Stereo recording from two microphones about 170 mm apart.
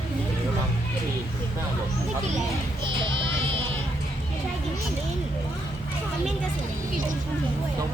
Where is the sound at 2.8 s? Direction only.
30° right (ahead or behind).